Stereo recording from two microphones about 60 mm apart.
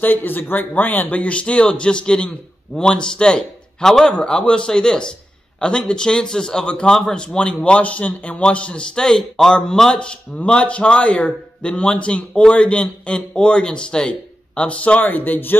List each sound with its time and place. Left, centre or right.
0.0 s a man's voice: left
7.0 s a man's voice: centre
7.3 s a man's voice: centre